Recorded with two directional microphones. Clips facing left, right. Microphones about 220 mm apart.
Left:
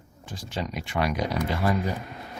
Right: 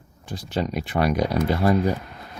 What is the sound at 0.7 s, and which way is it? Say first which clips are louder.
Speech: right 4 dB; 55° right (ahead or behind).